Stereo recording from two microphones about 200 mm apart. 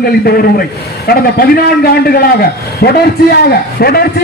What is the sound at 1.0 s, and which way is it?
A man's voice, 50° left (ahead or behind).